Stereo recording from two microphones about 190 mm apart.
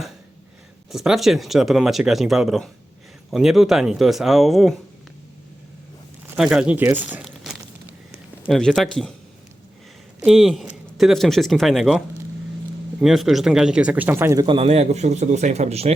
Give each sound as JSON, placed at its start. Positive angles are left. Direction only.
{"t": 0.9, "sound": "speech", "side_deg": 0}
{"t": 6.3, "sound": "crumpling", "side_deg": -5}
{"t": 8.4, "sound": "speech", "side_deg": 0}
{"t": 10.2, "sound": "speech", "side_deg": 0}
{"t": 14.4, "sound": "speech", "side_deg": -30}